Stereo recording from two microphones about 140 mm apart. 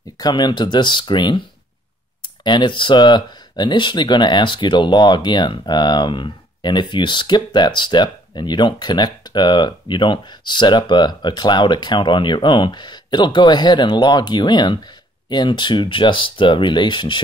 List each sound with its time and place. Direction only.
0.2 s speech: 30° left (ahead or behind)